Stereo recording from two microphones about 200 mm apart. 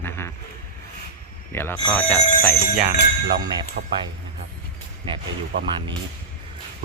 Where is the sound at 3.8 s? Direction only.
55° right (ahead or behind).